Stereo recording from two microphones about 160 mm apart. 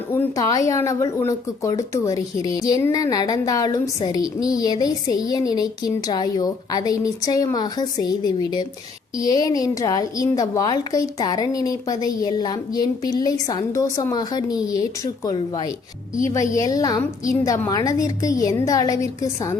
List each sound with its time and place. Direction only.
0.1 s a woman's voice: 20° left (ahead or behind)